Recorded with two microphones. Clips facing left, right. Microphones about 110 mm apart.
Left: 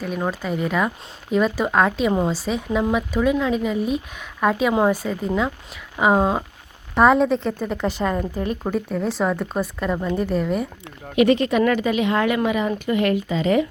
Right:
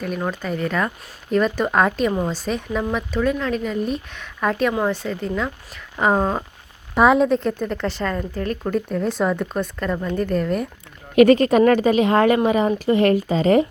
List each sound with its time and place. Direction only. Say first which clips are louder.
0.0 s a woman's voice: even; 5° left (ahead or behind)
11.1 s speech: right 4 dB; 45° right (ahead or behind)